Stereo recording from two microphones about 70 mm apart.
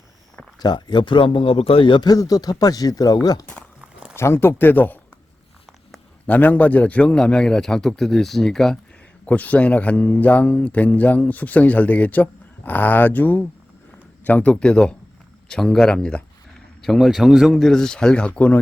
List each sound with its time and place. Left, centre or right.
0.6 s speech: left
2.0 s speech: left
4.1 s speech: left
6.2 s speech: left; by 8.8 s centre
9.2 s speech: left